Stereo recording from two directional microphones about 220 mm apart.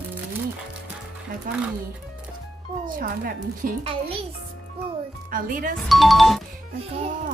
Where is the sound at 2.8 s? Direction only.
40° right (ahead or behind).